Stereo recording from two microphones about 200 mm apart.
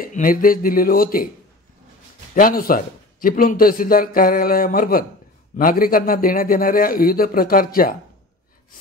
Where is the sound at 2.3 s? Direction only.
45° left (ahead or behind).